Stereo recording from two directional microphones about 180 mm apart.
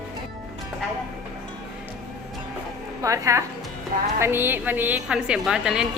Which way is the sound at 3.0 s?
15° right (ahead or behind).